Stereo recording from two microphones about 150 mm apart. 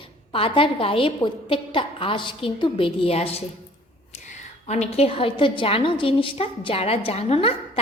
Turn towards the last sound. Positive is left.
turn(degrees=40)  # may be behind; listen again after turning